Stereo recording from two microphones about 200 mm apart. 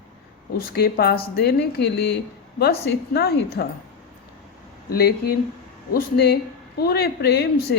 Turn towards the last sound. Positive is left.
turn(degrees=55)  # may be behind; listen again after turning